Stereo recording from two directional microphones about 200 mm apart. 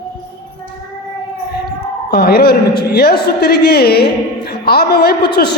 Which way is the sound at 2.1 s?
50° left (ahead or behind).